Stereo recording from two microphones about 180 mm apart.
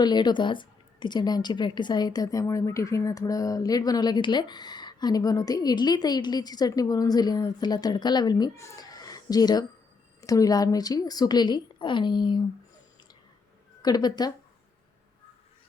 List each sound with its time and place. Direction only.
0.0 s a woman's voice: 25° left (ahead or behind)
13.8 s a woman's voice: 20° left (ahead or behind)